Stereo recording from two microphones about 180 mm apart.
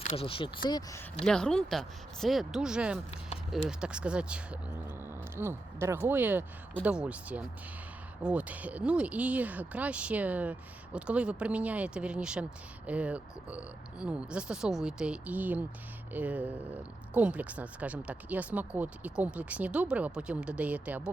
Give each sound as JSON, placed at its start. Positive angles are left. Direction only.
{"t": 0.2, "sound": "speech", "side_deg": 30}
{"t": 1.2, "sound": "speech", "side_deg": 5}